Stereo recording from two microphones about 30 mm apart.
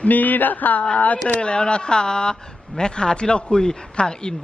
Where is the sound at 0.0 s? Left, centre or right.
Left.